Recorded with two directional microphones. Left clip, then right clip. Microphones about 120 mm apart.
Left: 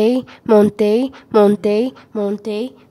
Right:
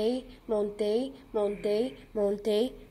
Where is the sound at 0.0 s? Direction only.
60° left (ahead or behind).